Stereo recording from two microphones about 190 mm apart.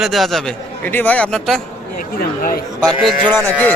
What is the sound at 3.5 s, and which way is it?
Speech, 10° left (ahead or behind).